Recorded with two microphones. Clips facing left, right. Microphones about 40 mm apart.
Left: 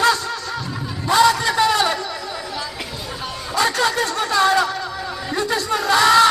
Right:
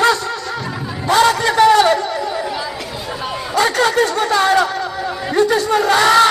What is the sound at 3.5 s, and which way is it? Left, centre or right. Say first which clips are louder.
Chatter: right 4 dB; centre.